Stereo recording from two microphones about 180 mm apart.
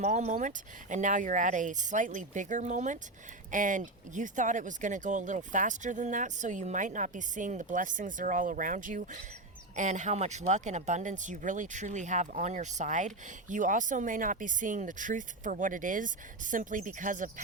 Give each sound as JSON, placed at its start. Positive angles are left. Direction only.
{"t": 0.0, "sound": "speech", "side_deg": -40}